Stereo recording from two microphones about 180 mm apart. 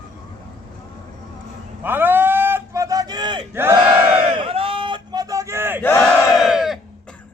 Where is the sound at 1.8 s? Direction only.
10° right (ahead or behind).